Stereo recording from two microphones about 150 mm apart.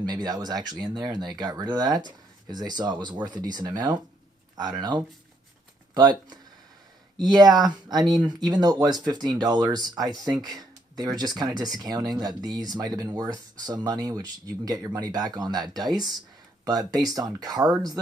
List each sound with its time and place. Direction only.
0.0 s speech: 25° right (ahead or behind)
5.9 s speech: 25° right (ahead or behind)
16.6 s speech: 25° right (ahead or behind)